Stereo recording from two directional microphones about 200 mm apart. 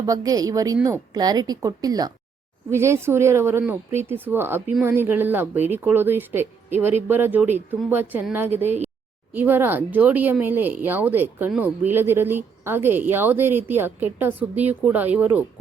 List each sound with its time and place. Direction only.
0.0 s a woman's voice: 20° right (ahead or behind)